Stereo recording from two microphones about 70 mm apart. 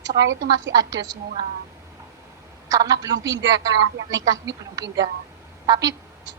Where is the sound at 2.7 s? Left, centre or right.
Right.